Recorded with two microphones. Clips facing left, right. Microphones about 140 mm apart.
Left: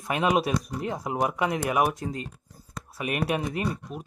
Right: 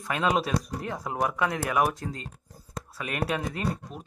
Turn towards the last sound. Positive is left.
turn(degrees=15)  # may be behind; listen again after turning